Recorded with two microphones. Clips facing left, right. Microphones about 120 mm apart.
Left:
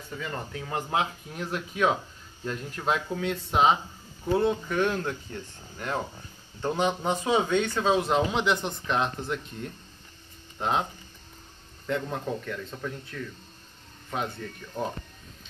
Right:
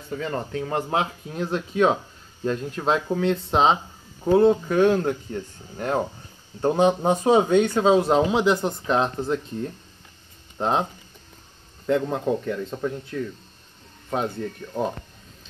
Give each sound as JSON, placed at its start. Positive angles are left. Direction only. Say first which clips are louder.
{"t": 0.1, "sound": "speech", "louder": "right 7 dB", "side_deg": -40}
{"t": 11.8, "sound": "speech", "louder": "right 8 dB", "side_deg": -25}
{"t": 14.6, "sound": "speech", "louder": "right 7 dB", "side_deg": -20}